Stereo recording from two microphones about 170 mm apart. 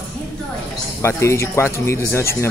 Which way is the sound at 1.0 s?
15° left (ahead or behind).